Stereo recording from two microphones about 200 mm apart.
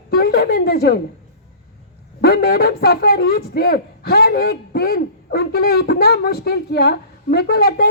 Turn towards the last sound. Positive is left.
turn(degrees=50)  # may be behind; listen again after turning